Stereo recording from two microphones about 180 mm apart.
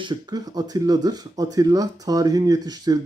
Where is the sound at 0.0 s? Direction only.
20° right (ahead or behind).